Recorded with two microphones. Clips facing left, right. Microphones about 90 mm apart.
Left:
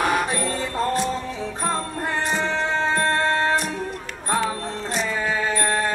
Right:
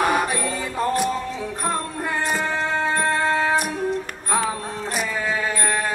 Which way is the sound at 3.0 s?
10° right (ahead or behind).